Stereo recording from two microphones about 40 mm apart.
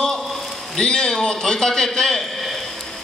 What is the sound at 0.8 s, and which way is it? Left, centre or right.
A man's voice, centre.